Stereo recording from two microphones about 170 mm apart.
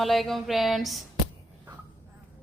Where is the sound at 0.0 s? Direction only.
Centre (ahead or behind).